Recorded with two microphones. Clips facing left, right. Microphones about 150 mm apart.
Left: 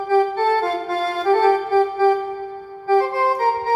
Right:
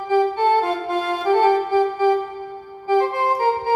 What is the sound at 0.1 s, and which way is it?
Music, 15° right (ahead or behind).